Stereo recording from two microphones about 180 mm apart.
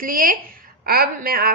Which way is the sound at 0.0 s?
50° right (ahead or behind).